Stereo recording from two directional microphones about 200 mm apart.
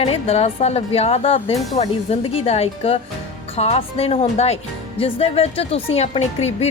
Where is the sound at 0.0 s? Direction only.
30° left (ahead or behind).